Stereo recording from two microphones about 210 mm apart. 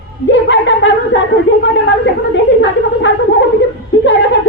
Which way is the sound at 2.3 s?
60° left (ahead or behind).